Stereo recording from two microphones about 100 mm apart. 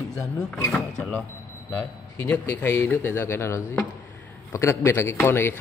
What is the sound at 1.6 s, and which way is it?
Speech, 15° left (ahead or behind).